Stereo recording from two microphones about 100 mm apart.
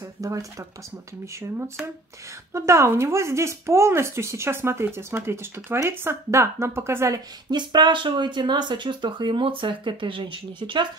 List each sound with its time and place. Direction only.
0.2 s speech: 35° right (ahead or behind)
2.5 s speech: 30° right (ahead or behind)
7.5 s speech: 50° right (ahead or behind)